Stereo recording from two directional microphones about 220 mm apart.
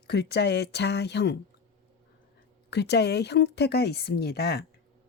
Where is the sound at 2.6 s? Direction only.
50° left (ahead or behind).